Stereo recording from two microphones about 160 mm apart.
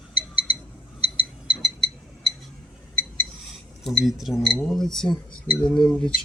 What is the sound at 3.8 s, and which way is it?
Speech, centre (ahead or behind).